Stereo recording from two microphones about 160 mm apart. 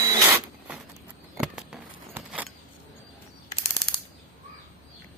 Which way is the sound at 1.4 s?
5° right (ahead or behind).